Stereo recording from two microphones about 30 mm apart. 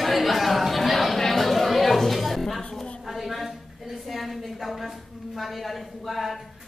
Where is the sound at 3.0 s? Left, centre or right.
Centre.